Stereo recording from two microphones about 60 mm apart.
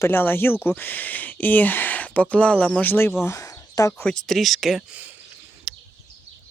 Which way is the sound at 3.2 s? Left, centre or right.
Left.